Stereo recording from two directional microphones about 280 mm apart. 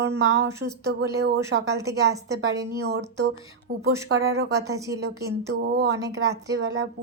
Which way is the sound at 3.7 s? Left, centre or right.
Right.